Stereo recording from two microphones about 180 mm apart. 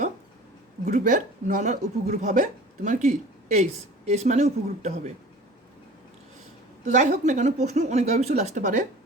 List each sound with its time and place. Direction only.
0.9 s speech: 40° right (ahead or behind)
6.8 s speech: 45° right (ahead or behind)